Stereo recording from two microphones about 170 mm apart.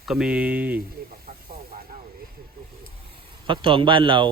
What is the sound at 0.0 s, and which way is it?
Speech, 5° right (ahead or behind).